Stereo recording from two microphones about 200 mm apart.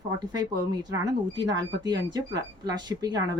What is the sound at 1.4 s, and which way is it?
Speech, 20° right (ahead or behind).